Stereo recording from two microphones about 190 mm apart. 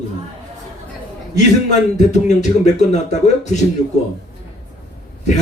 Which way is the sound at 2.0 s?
35° left (ahead or behind).